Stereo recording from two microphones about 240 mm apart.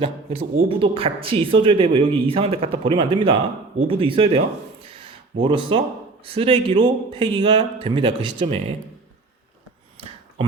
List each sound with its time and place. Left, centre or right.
0.0 s speech: right